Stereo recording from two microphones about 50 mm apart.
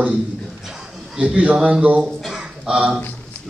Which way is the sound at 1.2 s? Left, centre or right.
Right.